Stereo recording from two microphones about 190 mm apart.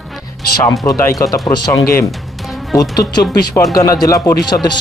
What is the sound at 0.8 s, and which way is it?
Speech, 20° left (ahead or behind).